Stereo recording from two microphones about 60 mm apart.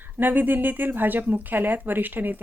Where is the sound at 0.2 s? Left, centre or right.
Right.